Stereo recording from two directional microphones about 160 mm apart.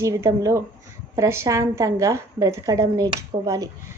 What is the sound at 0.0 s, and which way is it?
A woman's voice, 20° right (ahead or behind).